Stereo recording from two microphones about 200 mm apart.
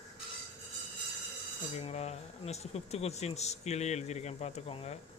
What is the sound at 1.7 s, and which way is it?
Speech, 30° left (ahead or behind).